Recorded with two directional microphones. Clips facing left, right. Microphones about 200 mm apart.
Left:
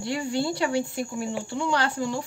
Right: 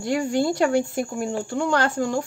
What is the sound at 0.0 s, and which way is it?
Speech, 45° right (ahead or behind).